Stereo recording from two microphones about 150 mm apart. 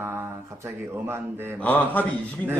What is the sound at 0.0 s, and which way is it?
Speech, 15° right (ahead or behind).